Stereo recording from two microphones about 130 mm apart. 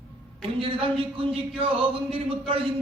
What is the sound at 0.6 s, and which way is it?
Speech, 45° right (ahead or behind).